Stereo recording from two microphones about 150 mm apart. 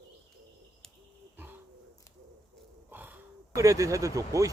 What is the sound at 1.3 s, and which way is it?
Bird, 15° right (ahead or behind).